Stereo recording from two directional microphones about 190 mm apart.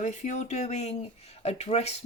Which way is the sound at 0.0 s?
40° left (ahead or behind).